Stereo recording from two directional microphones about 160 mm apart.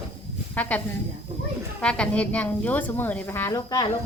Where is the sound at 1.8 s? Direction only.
5° left (ahead or behind); by 3.9 s 20° left (ahead or behind).